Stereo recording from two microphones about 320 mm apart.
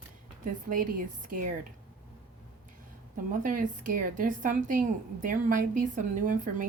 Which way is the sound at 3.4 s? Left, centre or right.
Right.